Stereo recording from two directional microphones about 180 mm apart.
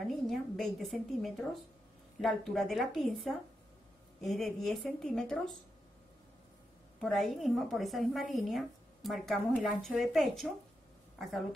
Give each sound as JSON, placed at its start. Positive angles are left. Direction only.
{"t": 0.0, "sound": "a woman's voice", "side_deg": 0}
{"t": 7.0, "sound": "a woman's voice", "side_deg": 0}